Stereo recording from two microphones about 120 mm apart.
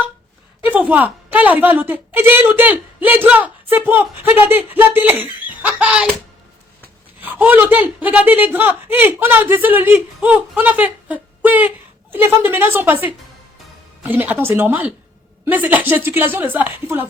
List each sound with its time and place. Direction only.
0.7 s a woman's voice: 15° right (ahead or behind)
7.2 s a woman's voice: 15° right (ahead or behind)